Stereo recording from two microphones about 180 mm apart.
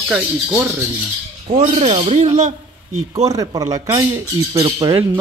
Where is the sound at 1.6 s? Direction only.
35° right (ahead or behind).